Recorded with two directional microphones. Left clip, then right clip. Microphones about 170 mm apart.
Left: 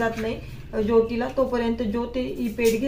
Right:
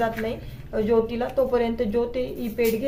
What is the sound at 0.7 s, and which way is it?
Speech, 35° right (ahead or behind).